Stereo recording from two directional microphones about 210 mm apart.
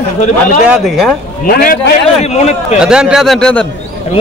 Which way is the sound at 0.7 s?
Centre (ahead or behind).